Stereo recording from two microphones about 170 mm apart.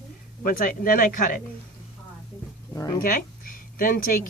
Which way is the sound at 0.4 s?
55° left (ahead or behind).